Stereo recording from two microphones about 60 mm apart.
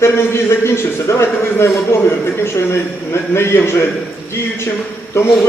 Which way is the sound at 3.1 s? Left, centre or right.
Left.